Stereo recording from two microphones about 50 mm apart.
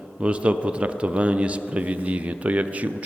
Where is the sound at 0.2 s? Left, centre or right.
Right.